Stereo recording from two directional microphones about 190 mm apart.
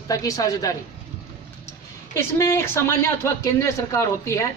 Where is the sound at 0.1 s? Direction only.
20° left (ahead or behind).